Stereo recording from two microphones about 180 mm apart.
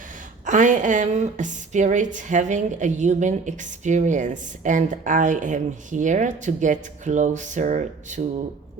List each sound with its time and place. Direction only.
0.4 s a woman's voice: 45° right (ahead or behind)